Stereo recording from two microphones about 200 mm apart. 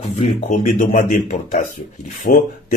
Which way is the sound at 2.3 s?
50° left (ahead or behind).